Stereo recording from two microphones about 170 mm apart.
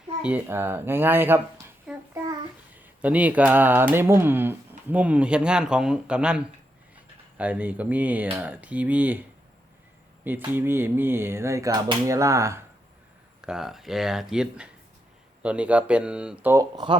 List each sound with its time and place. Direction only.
0.2 s speech: 10° right (ahead or behind)
1.9 s child singing: 5° right (ahead or behind)
2.7 s speech: 10° right (ahead or behind)
10.2 s speech: 10° right (ahead or behind)
13.4 s speech: 5° right (ahead or behind)
16.7 s speech: 25° right (ahead or behind)